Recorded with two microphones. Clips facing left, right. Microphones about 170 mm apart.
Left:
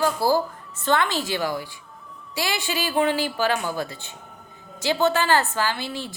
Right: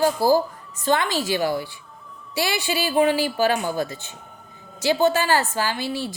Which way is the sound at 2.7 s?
15° right (ahead or behind).